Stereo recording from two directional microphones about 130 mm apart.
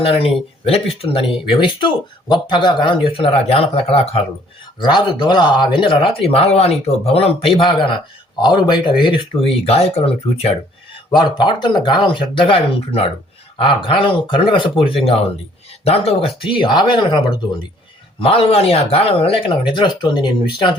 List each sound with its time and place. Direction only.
0.0 s speech: 45° left (ahead or behind)
4.8 s speech: 35° left (ahead or behind)
11.1 s speech: 40° left (ahead or behind)
18.2 s speech: 45° left (ahead or behind)